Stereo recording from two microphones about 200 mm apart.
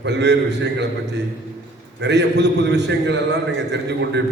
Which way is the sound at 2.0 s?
60° right (ahead or behind).